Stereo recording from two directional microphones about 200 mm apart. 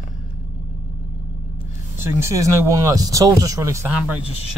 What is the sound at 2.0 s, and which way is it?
Speech, 15° right (ahead or behind).